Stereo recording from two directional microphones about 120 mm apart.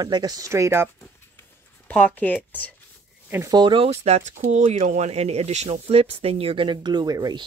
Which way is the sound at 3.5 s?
45° right (ahead or behind).